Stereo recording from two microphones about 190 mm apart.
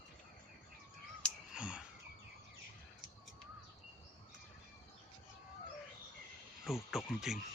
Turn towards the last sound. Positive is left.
turn(degrees=0)  # may be behind; listen again after turning